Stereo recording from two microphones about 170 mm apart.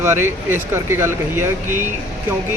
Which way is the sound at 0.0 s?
15° right (ahead or behind).